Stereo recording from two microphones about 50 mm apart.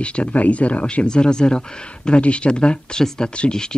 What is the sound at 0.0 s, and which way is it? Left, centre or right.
Speech, left.